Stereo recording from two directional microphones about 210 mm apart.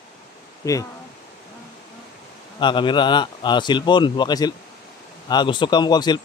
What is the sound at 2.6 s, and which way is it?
Speech, 20° left (ahead or behind).